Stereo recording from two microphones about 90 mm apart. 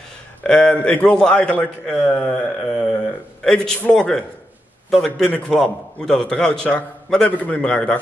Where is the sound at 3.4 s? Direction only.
5° left (ahead or behind).